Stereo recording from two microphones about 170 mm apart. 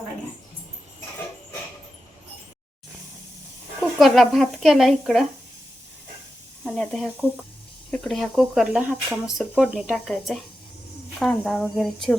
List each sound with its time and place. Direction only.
3.8 s speech: centre (ahead or behind)
6.7 s speech: centre (ahead or behind)